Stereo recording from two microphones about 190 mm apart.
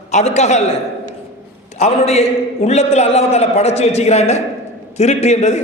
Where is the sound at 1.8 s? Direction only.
35° left (ahead or behind).